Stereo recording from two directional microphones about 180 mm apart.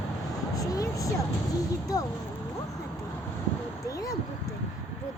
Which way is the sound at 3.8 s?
20° left (ahead or behind).